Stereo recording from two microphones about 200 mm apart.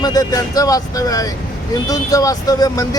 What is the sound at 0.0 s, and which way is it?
Speech, 20° left (ahead or behind).